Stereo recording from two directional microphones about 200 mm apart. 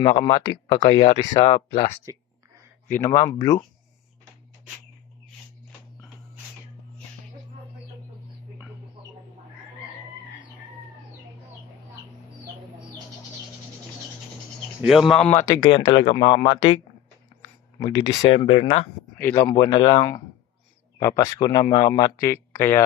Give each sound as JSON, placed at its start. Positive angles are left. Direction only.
{"t": 0.0, "sound": "speech", "side_deg": 25}
{"t": 2.1, "sound": "speech", "side_deg": -15}
{"t": 2.9, "sound": "speech", "side_deg": 15}
{"t": 14.8, "sound": "speech", "side_deg": 0}
{"t": 19.1, "sound": "speech", "side_deg": 10}
{"t": 19.5, "sound": "speech", "side_deg": 25}